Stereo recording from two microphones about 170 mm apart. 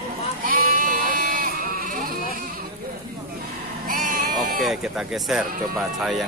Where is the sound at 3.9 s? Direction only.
55° right (ahead or behind).